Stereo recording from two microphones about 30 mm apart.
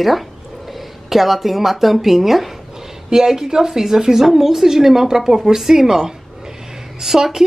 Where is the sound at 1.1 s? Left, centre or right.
Centre.